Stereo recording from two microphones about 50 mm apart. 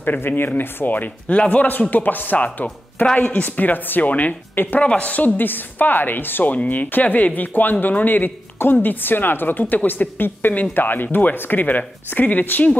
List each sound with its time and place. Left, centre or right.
0.0 s speech: left
6.5 s speech: left